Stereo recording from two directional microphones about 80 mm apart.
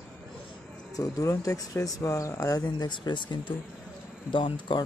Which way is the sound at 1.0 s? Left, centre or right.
Left.